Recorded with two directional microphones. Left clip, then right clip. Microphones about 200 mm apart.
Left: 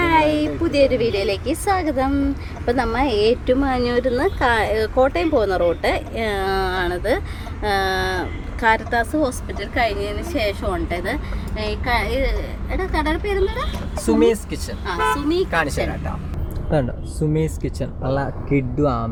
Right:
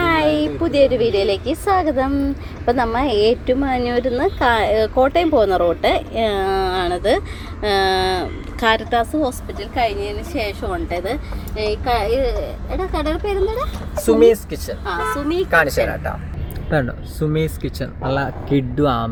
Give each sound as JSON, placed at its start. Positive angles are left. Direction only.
{"t": 0.0, "sound": "a woman's voice", "side_deg": 5}
{"t": 14.1, "sound": "speech", "side_deg": 0}
{"t": 17.2, "sound": "speech", "side_deg": -5}
{"t": 18.8, "sound": "speech", "side_deg": -25}